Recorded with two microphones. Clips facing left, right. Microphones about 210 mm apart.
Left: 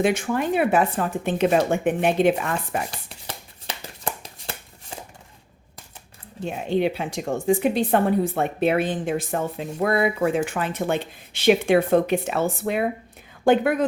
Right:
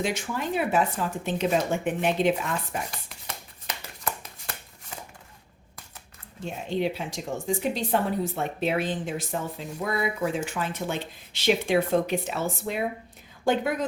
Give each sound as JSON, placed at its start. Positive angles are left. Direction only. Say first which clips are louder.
{"t": 0.0, "sound": "a woman's voice", "louder": "left 7 dB", "side_deg": 55}
{"t": 2.9, "sound": "shuffling cards", "louder": "left 3 dB", "side_deg": 30}
{"t": 6.4, "sound": "a woman's voice", "louder": "left 5 dB", "side_deg": 65}